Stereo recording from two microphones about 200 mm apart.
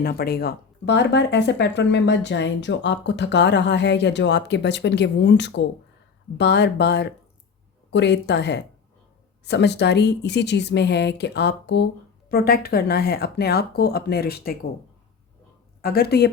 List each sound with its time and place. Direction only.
0.0 s speech: 50° left (ahead or behind)
15.8 s speech: 50° left (ahead or behind)